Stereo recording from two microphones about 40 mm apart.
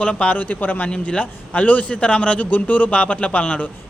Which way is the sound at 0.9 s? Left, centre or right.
Left.